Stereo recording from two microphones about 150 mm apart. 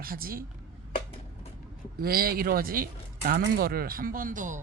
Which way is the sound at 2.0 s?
85° right.